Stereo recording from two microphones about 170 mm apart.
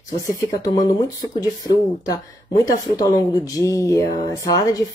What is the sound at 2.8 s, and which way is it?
Speech, 20° left (ahead or behind).